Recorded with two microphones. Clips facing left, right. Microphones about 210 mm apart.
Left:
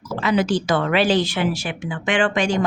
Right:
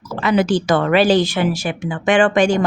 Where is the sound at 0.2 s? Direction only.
60° right (ahead or behind).